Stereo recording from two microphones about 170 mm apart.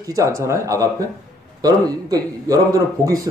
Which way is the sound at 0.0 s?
20° right (ahead or behind).